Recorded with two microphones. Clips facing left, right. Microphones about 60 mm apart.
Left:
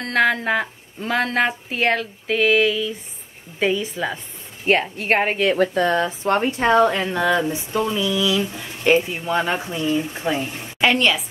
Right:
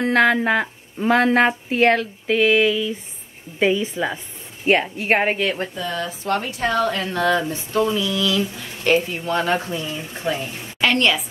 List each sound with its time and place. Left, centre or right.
0.0 s a woman's voice: centre
5.9 s speech: left
6.9 s speech: centre